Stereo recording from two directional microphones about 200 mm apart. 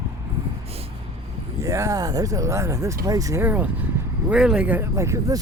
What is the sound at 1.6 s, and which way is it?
Speech, 15° right (ahead or behind).